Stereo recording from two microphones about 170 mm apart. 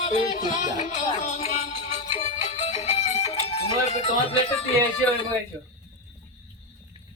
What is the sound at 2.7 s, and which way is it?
Music, 40° left (ahead or behind).